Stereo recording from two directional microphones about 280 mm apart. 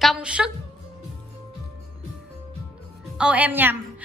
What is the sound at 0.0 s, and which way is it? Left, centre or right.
Speech, centre.